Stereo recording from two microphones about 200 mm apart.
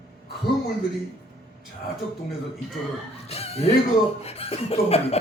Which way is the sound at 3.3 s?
30° left (ahead or behind).